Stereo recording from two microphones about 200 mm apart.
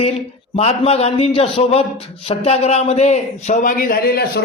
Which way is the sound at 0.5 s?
30° left (ahead or behind).